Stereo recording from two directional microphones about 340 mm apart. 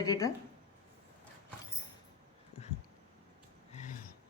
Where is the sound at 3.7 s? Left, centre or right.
Left.